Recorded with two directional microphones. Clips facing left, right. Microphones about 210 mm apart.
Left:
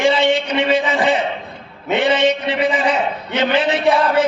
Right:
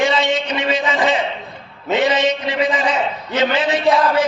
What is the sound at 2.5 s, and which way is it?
Speech, 30° left (ahead or behind).